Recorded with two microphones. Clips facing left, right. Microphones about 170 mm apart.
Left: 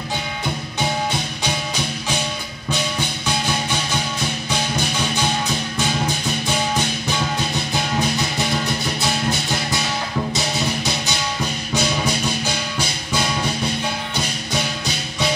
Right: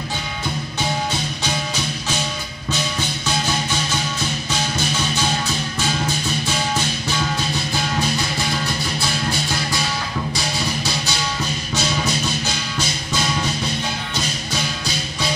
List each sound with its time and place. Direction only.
4.5 s music: 15° left (ahead or behind)
10.3 s music: 20° left (ahead or behind)
12.4 s music: 15° left (ahead or behind)